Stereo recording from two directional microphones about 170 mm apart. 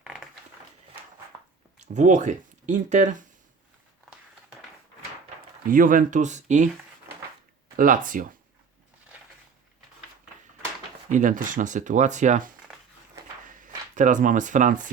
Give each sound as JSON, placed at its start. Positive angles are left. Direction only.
{"t": 0.0, "sound": "a sound", "side_deg": -5}
{"t": 1.8, "sound": "speech", "side_deg": -45}
{"t": 5.6, "sound": "speech", "side_deg": -55}
{"t": 7.8, "sound": "speech", "side_deg": -50}
{"t": 11.1, "sound": "speech", "side_deg": -50}